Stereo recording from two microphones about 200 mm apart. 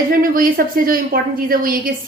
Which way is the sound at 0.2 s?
45° right (ahead or behind).